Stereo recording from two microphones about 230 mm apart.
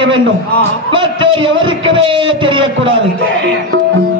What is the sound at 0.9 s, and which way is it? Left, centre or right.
A man's voice, right.